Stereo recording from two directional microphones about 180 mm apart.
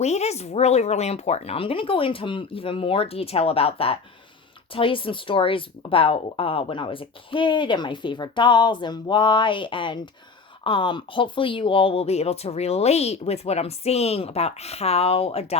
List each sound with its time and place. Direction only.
0.0 s a woman's voice: 40° left (ahead or behind)